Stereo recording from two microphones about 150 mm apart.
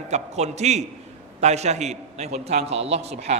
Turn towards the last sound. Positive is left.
turn(degrees=-45)  # may be behind; listen again after turning